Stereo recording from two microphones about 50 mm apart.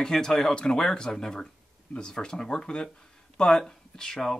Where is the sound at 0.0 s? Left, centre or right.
Centre.